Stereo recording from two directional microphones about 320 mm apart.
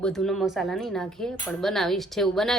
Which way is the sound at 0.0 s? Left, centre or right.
Centre.